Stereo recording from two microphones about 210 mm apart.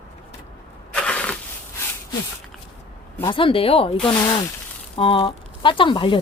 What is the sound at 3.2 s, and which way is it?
Speech, 25° left (ahead or behind).